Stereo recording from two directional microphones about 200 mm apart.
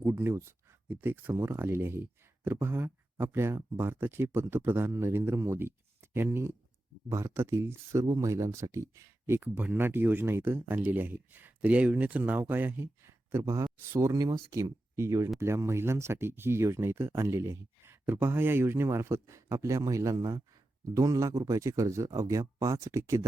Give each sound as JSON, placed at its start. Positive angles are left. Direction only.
{"t": 0.0, "sound": "speech", "side_deg": -10}